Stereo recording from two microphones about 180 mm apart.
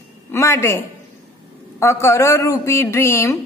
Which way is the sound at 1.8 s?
15° left (ahead or behind).